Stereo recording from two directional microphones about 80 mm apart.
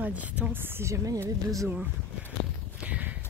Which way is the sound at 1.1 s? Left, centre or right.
Right.